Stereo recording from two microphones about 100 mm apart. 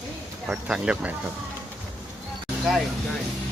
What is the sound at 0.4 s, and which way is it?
Speech, 10° right (ahead or behind).